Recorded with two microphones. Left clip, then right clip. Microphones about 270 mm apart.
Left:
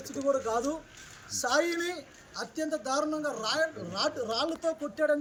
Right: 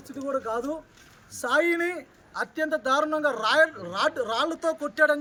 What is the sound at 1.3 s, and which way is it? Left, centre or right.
Speech, right.